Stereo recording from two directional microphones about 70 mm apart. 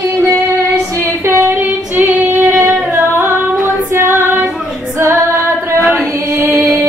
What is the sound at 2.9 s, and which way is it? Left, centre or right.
Singing, right.